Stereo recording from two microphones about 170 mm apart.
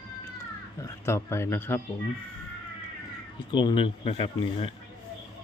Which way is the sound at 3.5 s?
25° left (ahead or behind).